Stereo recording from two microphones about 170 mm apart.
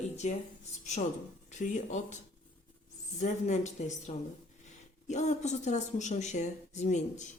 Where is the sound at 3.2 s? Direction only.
45° left (ahead or behind).